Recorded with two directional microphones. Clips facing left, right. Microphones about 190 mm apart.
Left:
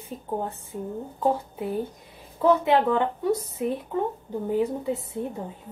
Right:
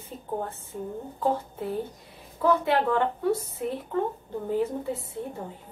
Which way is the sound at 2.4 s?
20° left (ahead or behind).